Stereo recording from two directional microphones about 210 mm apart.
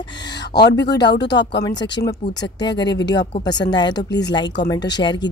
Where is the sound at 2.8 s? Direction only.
55° left (ahead or behind).